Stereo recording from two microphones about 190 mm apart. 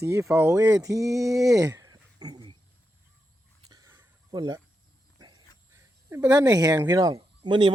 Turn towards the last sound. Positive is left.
turn(degrees=-25)  # may be behind; listen again after turning